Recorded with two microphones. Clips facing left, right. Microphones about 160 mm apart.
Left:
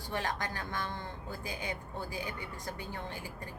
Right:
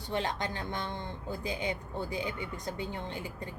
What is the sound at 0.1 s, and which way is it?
A woman's voice, 20° right (ahead or behind).